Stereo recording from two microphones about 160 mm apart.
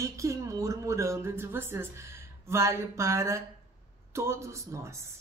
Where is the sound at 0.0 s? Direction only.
20° right (ahead or behind).